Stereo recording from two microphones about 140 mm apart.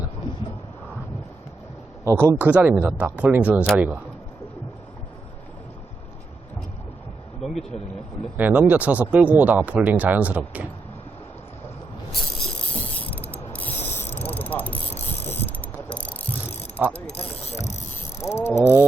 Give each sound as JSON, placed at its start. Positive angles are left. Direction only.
{"t": 2.0, "sound": "speech", "side_deg": -20}
{"t": 7.4, "sound": "speech", "side_deg": 0}
{"t": 8.4, "sound": "speech", "side_deg": -10}
{"t": 12.8, "sound": "mechanisms", "side_deg": 10}
{"t": 16.7, "sound": "mechanisms", "side_deg": -15}
{"t": 17.1, "sound": "mechanisms", "side_deg": 50}
{"t": 18.2, "sound": "ratchet", "side_deg": 20}
{"t": 18.6, "sound": "speech", "side_deg": -15}